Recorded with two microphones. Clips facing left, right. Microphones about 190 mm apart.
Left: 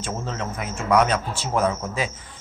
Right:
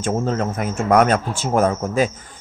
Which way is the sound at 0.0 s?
45° right (ahead or behind).